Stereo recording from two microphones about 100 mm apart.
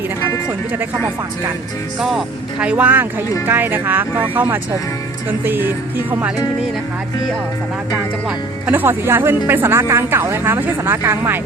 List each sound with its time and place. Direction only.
2.0 s speech: 5° right (ahead or behind)
8.6 s speech: 20° right (ahead or behind)